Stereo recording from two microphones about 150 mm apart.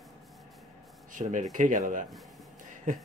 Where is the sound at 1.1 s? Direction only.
60° right (ahead or behind).